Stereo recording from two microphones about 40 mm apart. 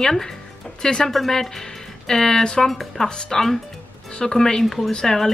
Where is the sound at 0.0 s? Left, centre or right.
Centre.